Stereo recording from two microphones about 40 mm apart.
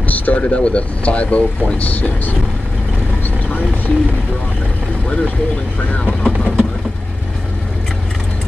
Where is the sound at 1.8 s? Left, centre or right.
Left.